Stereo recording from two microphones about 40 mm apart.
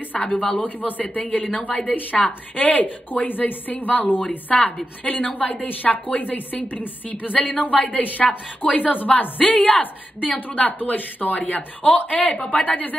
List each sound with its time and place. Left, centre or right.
0.1 s a woman's voice: left